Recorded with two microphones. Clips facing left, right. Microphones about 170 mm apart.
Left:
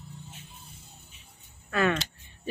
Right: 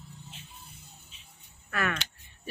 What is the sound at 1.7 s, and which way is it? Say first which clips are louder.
Speech: left 6 dB; 25° left (ahead or behind).